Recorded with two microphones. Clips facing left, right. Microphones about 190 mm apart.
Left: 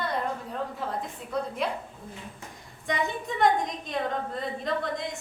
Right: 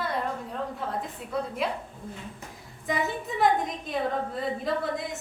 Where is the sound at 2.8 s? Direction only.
5° right (ahead or behind).